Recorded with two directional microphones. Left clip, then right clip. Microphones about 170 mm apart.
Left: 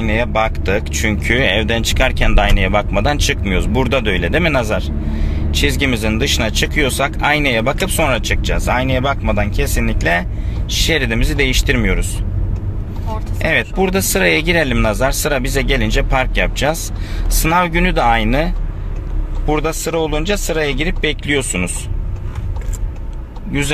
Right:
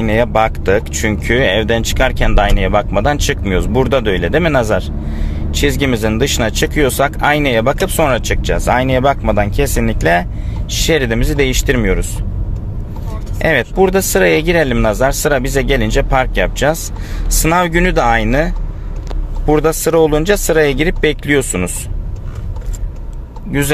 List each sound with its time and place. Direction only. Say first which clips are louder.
0.0 s speech: right 4 dB; 30° right (ahead or behind)
13.4 s speech: right 4 dB; 30° right (ahead or behind)